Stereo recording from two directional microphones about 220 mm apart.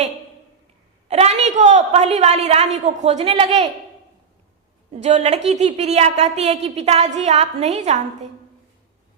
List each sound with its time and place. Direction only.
1.0 s a woman's voice: 30° right (ahead or behind)
4.9 s a woman's voice: 30° right (ahead or behind)